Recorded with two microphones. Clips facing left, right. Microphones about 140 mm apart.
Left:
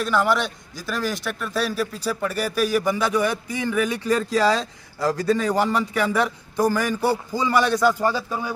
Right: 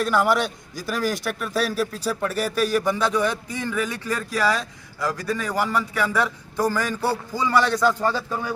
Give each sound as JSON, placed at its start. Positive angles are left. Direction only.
{"t": 0.0, "sound": "a man's voice", "side_deg": -5}